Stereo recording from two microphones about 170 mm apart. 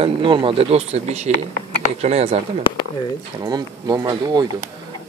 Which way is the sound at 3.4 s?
25° right (ahead or behind).